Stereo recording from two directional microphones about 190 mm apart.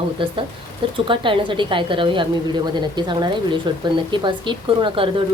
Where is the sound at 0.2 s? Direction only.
25° right (ahead or behind).